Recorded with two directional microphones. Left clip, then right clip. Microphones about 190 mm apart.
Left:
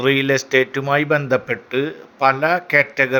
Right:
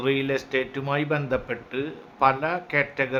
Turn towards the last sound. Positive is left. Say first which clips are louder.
# left 9 dB
turn(degrees=25)  # may be behind; listen again after turning